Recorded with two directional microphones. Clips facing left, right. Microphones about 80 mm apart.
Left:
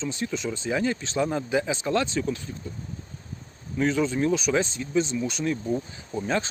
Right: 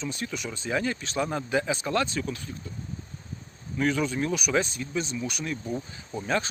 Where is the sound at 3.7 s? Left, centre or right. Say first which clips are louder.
Left 2 dB; left.